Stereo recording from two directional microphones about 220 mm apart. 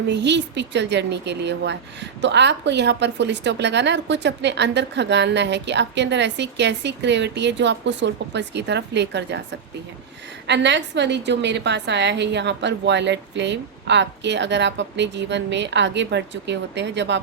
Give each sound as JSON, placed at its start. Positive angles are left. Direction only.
{"t": 0.1, "sound": "speech", "side_deg": -50}
{"t": 10.4, "sound": "speech", "side_deg": -50}